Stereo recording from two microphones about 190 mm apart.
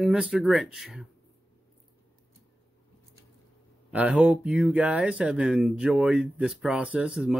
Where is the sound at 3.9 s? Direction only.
5° right (ahead or behind).